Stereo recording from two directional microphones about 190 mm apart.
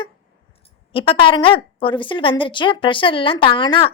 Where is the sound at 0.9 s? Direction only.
30° left (ahead or behind).